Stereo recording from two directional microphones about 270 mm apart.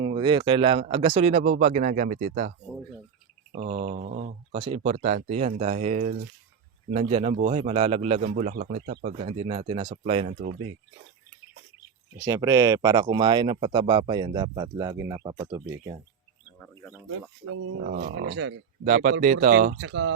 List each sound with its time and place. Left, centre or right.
0.0 s speech: centre
3.5 s speech: right
4.5 s speech: centre
12.1 s speech: centre
16.6 s speech: centre
17.8 s speech: right
18.9 s speech: right